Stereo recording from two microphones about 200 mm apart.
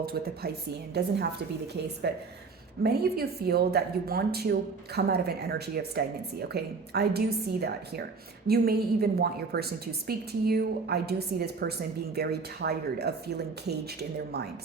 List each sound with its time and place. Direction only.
0.0 s a woman's voice: 50° right (ahead or behind)